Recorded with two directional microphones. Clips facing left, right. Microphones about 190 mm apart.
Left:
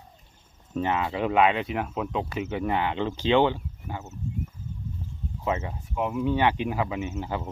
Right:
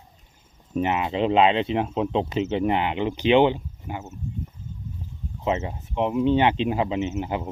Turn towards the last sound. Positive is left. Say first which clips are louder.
# right 4 dB
turn(degrees=-20)  # may be behind; listen again after turning